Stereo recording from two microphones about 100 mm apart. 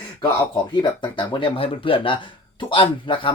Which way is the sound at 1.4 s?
65° left (ahead or behind).